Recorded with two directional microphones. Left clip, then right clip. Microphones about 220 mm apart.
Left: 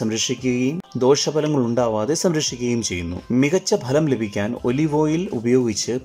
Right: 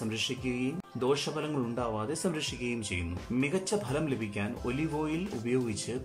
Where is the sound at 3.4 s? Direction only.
35° left (ahead or behind).